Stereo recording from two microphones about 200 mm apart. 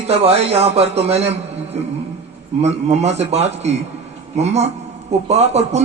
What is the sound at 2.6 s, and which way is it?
A man's voice, 35° right (ahead or behind).